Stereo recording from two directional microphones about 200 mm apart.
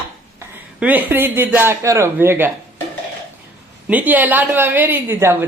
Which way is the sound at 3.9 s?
10° right (ahead or behind).